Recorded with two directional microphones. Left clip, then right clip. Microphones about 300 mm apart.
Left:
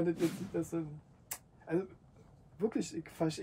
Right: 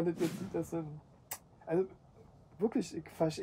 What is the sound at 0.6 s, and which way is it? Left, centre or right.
Speech, right.